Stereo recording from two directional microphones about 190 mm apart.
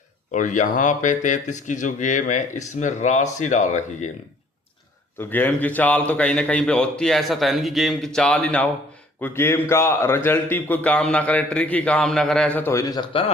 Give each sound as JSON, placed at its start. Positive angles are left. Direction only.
{"t": 0.3, "sound": "speech", "side_deg": 40}
{"t": 5.3, "sound": "a man's voice", "side_deg": 10}